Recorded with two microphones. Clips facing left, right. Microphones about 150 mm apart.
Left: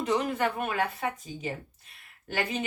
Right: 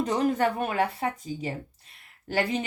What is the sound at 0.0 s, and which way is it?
Speech, 40° right (ahead or behind).